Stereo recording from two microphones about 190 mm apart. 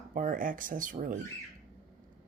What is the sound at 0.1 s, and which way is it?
Speech, 45° right (ahead or behind).